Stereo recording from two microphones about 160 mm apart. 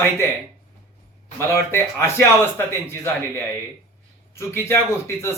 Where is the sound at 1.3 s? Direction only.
15° left (ahead or behind).